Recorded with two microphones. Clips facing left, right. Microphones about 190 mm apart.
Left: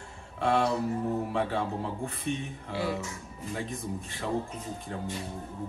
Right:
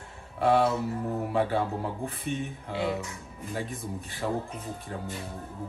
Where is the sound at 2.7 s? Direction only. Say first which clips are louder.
Right 1 dB; 20° right (ahead or behind).